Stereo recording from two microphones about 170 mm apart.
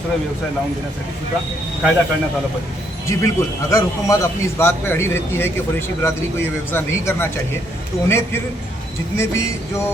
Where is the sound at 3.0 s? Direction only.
20° left (ahead or behind).